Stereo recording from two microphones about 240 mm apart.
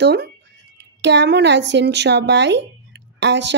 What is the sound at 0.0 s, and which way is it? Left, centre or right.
Speech, right.